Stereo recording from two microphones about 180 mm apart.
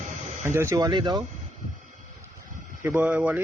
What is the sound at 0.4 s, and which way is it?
Speech, 15° right (ahead or behind).